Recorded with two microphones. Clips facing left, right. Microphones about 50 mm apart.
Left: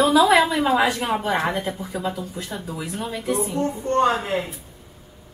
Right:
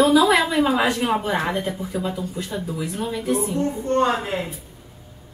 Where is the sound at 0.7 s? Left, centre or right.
Centre.